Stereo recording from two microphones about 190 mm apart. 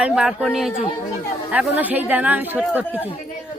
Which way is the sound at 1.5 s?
10° right (ahead or behind).